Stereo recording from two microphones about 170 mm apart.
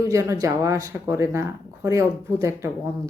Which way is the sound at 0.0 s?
15° right (ahead or behind).